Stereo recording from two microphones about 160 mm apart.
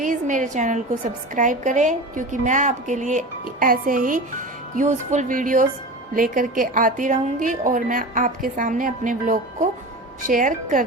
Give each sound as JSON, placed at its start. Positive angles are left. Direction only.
{"t": 0.0, "sound": "a woman's voice", "side_deg": -55}